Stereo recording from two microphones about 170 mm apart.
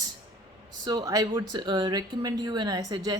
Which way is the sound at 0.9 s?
20° right (ahead or behind).